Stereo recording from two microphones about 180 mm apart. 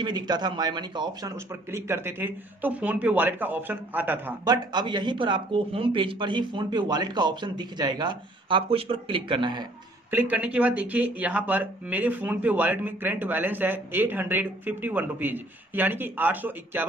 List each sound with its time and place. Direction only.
0.0 s speech: 25° right (ahead or behind)
4.5 s speech: 25° right (ahead or behind)
10.1 s speech: 10° right (ahead or behind)